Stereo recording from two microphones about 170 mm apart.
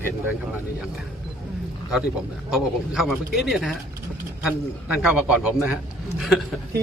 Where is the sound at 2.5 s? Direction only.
Centre (ahead or behind).